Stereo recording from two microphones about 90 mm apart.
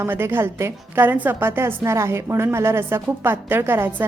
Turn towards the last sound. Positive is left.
turn(degrees=-25)  # may be behind; listen again after turning